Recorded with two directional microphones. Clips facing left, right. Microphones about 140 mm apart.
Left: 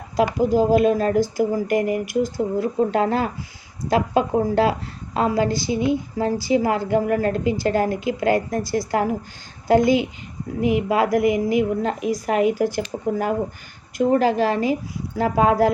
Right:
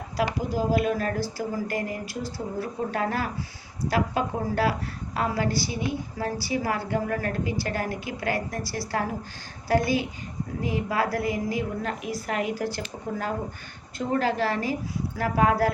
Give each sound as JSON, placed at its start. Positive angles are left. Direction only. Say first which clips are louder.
{"t": 0.2, "sound": "a woman's voice", "louder": "left 8 dB", "side_deg": 20}